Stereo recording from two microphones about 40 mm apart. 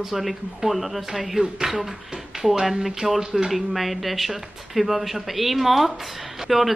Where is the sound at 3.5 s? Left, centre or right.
Centre.